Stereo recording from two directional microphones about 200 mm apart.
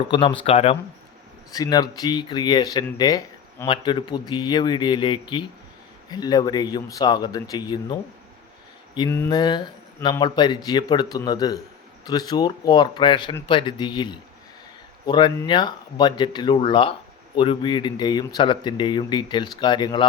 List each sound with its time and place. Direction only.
0.1 s speech: 25° left (ahead or behind)
1.5 s speech: 20° left (ahead or behind)
9.0 s speech: 10° left (ahead or behind)